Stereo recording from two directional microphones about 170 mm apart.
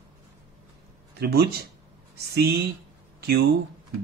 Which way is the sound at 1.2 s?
70° right (ahead or behind).